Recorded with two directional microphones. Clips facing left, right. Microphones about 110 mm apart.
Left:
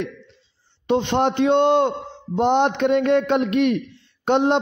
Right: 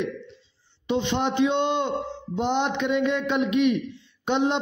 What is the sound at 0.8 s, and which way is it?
A man's voice, 55° left (ahead or behind).